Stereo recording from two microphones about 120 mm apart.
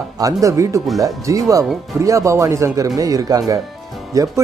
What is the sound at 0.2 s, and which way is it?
Speech, 25° right (ahead or behind).